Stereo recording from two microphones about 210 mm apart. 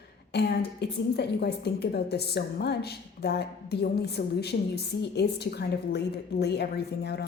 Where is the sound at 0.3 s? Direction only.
50° left (ahead or behind).